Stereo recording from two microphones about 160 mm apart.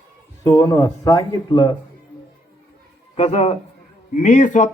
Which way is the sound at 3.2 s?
40° left (ahead or behind).